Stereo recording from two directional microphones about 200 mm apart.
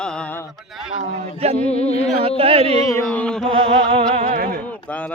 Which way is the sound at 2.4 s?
25° right (ahead or behind).